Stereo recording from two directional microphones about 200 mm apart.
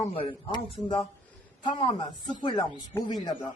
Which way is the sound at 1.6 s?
25° left (ahead or behind).